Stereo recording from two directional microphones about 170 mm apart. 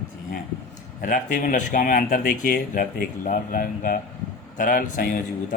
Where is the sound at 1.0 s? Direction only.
50° left (ahead or behind).